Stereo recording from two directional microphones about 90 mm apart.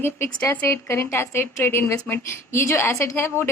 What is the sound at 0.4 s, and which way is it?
A woman's voice, 30° left (ahead or behind).